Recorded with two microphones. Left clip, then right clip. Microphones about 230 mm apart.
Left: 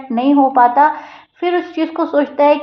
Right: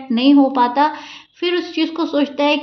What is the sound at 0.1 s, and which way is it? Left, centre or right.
A woman's voice, right.